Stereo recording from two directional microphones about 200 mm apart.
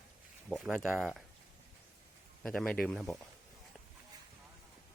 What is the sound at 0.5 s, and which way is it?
Speech, centre (ahead or behind).